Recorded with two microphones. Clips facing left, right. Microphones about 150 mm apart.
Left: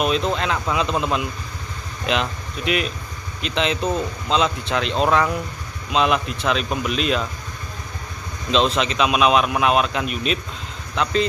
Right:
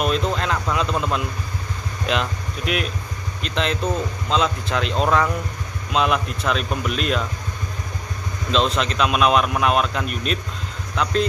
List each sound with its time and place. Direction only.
0.0 s speech: centre (ahead or behind)
8.5 s speech: centre (ahead or behind)